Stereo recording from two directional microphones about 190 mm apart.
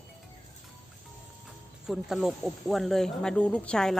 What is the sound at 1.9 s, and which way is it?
Speech, centre (ahead or behind).